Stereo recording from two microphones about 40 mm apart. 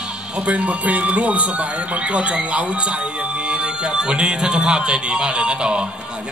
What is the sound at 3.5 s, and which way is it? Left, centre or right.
A man's voice, right.